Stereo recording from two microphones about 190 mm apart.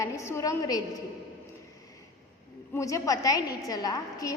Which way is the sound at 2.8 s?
15° left (ahead or behind).